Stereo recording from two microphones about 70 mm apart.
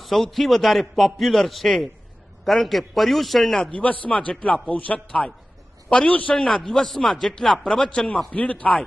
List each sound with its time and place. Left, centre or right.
0.0 s a man's voice: centre
3.7 s a man's voice: centre
6.3 s speech: centre